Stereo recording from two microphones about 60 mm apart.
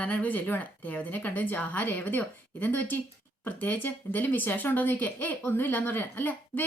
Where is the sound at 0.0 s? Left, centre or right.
Left.